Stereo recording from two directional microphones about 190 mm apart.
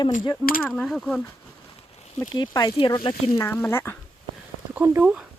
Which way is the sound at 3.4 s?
10° left (ahead or behind).